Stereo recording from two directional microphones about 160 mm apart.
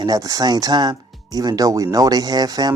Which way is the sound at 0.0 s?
25° right (ahead or behind).